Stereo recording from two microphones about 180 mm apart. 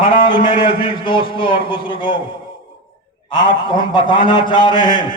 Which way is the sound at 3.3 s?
25° left (ahead or behind).